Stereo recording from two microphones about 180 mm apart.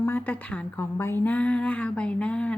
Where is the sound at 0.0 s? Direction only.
10° left (ahead or behind).